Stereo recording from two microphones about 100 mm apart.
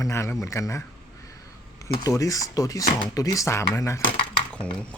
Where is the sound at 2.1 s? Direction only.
35° left (ahead or behind).